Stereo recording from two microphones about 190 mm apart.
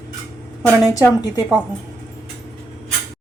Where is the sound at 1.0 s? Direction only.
10° right (ahead or behind).